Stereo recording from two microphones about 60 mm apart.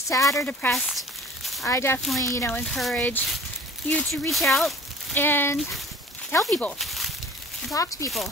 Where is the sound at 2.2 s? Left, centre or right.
Left.